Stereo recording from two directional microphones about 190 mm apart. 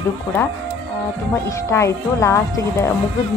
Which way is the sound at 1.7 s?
15° left (ahead or behind).